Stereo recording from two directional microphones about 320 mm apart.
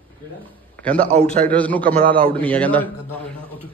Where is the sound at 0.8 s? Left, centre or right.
Centre.